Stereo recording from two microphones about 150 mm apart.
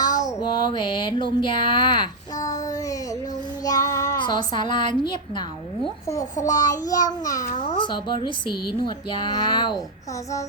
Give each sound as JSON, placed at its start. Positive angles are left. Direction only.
{"t": 0.0, "sound": "child singing", "side_deg": 25}
{"t": 3.6, "sound": "a child's voice", "side_deg": 25}
{"t": 6.6, "sound": "a child's voice", "side_deg": 25}